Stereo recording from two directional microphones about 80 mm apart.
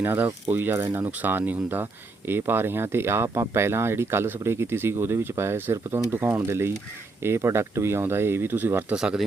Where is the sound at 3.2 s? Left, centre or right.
Right.